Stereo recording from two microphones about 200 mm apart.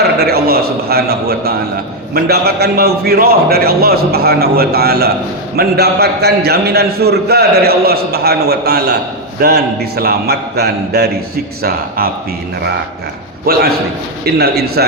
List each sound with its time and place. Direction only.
0.0 s a man's voice: 50° right (ahead or behind)
13.4 s a man's voice: 50° right (ahead or behind)